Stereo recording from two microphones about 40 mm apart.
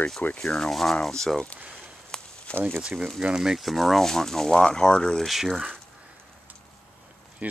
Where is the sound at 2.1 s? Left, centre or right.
Centre.